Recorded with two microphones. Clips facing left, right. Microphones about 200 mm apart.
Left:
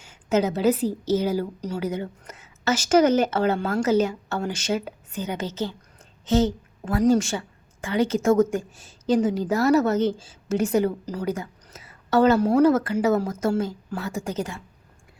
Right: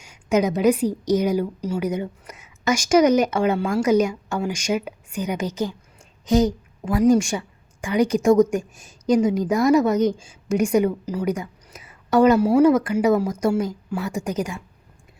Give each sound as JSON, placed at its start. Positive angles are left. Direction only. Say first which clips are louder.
{"t": 0.0, "sound": "a woman's voice", "louder": "right 2 dB", "side_deg": -15}